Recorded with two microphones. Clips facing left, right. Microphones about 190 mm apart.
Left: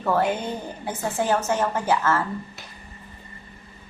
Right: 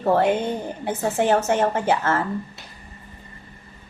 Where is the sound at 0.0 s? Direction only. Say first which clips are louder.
Right 4 dB; 25° right (ahead or behind).